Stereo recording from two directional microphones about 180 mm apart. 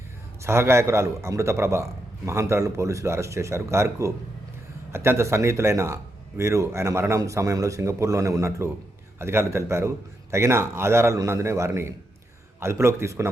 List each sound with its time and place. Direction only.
0.4 s a man's voice: 15° right (ahead or behind)